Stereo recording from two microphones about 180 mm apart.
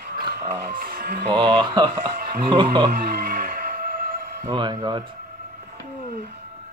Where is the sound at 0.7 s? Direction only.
55° right (ahead or behind).